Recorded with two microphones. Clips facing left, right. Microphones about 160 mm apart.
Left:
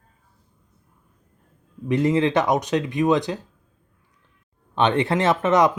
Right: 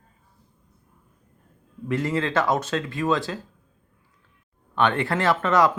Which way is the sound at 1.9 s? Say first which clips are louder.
Left 5 dB; 20° left (ahead or behind).